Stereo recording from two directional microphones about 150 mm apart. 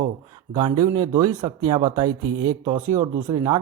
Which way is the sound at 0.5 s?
25° right (ahead or behind).